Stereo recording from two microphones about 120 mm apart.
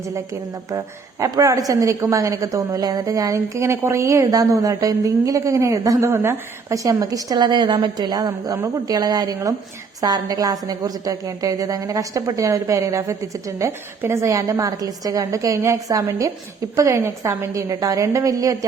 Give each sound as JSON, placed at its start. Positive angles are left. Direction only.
{"t": 0.7, "sound": "a woman's voice", "side_deg": -25}